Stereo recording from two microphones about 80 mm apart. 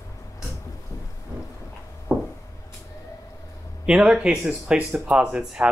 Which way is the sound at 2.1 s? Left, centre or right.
Centre.